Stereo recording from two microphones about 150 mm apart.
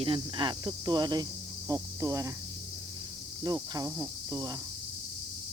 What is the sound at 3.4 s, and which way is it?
Cricket, 25° right (ahead or behind).